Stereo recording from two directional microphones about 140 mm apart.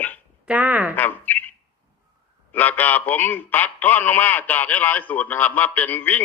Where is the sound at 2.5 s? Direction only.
15° left (ahead or behind).